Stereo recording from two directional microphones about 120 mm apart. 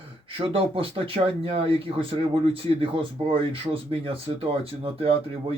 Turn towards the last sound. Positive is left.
turn(degrees=-55)  # may be behind; listen again after turning